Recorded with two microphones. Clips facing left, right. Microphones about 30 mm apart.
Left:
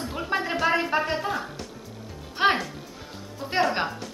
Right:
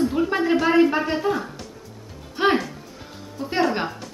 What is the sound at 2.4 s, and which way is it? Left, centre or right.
Speech, centre.